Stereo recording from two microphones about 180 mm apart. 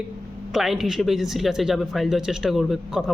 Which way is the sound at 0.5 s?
Centre (ahead or behind).